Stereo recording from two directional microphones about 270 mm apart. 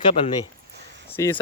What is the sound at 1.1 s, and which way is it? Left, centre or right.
Speech, centre.